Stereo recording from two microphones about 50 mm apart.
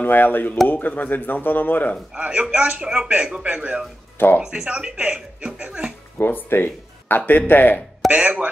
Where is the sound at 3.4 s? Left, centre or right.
Right.